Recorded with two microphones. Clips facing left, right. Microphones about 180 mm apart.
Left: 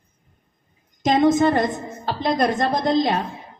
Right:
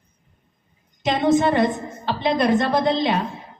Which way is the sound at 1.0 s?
40° left (ahead or behind).